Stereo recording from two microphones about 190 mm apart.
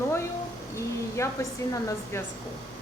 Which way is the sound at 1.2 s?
15° left (ahead or behind).